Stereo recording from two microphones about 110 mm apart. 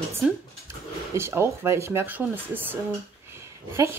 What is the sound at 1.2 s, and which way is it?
Speech, 25° right (ahead or behind).